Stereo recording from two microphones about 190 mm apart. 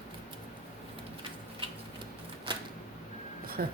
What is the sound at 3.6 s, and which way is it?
Speech, 50° right (ahead or behind).